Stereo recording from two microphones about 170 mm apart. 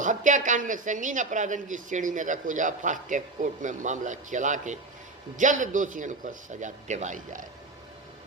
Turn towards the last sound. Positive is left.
turn(degrees=-45)  # may be behind; listen again after turning